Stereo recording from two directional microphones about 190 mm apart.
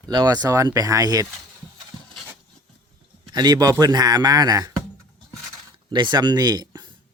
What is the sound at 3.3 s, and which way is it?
A man's voice, 20° right (ahead or behind).